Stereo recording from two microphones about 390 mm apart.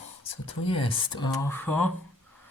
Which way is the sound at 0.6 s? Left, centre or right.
Centre.